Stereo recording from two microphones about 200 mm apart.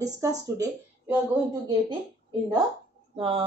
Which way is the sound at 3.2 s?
25° right (ahead or behind).